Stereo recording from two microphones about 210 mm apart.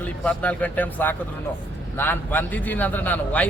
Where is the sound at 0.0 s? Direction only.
5° left (ahead or behind).